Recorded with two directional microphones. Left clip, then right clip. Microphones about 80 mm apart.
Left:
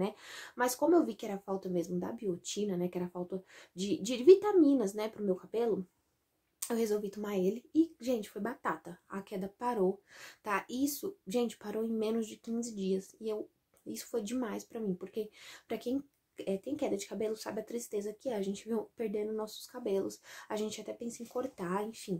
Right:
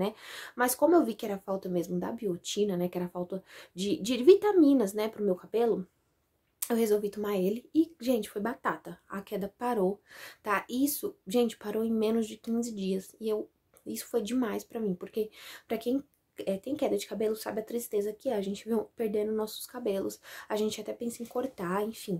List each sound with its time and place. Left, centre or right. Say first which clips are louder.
0.0 s speech: right 4 dB; right